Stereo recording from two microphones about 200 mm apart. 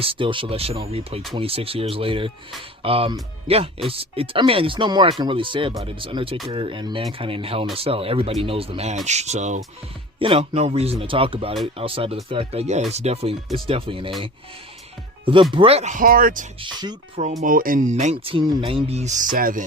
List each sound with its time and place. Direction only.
0.0 s speech: 25° right (ahead or behind)
15.2 s speech: 25° right (ahead or behind); by 16.5 s 45° right (ahead or behind)
16.6 s speech: 20° right (ahead or behind)
17.4 s speech: 45° right (ahead or behind)